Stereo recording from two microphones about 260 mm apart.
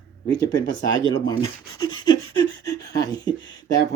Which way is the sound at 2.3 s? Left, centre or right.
Left.